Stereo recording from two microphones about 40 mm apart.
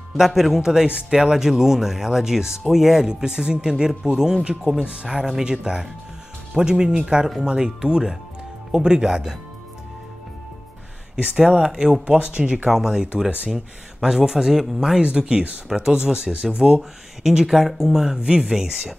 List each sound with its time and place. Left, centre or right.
0.2 s speech: centre
3.1 s speech: centre
5.4 s speech: right
11.3 s speech: centre
12.6 s speech: centre
15.0 s speech: right
17.5 s speech: centre